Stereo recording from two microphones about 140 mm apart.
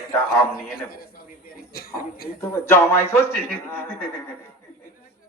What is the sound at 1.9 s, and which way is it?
Speech, 90° left.